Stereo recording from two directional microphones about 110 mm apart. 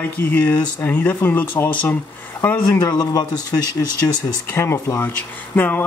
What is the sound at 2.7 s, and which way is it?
Speech, 35° left (ahead or behind).